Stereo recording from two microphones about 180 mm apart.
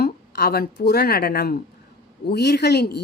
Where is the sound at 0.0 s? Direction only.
60° left (ahead or behind).